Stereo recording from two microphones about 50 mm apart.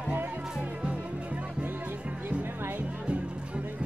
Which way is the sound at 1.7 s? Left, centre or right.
Right.